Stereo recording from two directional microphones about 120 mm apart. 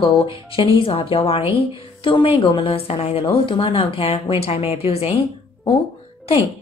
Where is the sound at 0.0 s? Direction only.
45° left (ahead or behind).